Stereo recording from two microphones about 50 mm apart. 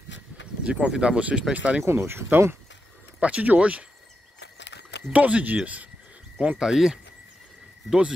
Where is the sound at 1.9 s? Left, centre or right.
Right.